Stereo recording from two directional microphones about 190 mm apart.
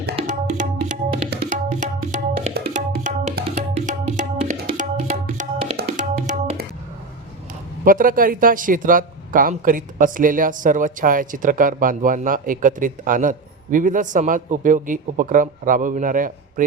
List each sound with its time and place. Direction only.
0.3 s tabla: 40° right (ahead or behind)
3.4 s music: 35° right (ahead or behind)
4.5 s music: 55° right (ahead or behind)
4.9 s music: 40° right (ahead or behind)
7.9 s a man's voice: 45° right (ahead or behind)